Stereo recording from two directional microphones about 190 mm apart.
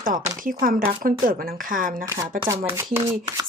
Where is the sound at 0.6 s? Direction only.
50° right (ahead or behind).